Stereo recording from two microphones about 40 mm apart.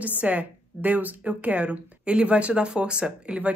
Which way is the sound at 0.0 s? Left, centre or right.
Right.